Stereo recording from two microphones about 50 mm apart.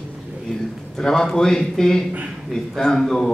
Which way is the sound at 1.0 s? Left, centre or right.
Centre.